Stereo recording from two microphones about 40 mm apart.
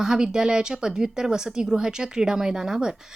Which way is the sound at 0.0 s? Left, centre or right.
Centre.